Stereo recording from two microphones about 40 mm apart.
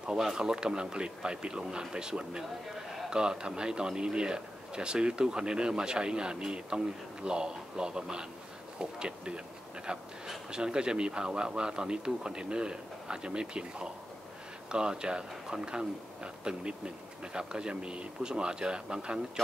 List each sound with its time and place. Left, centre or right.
0.2 s a man's voice: centre